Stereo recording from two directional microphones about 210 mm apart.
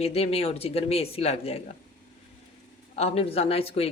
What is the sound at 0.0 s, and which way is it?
A woman's voice, 30° left (ahead or behind).